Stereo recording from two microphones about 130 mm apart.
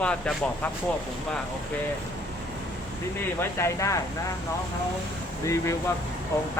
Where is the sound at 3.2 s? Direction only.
20° left (ahead or behind).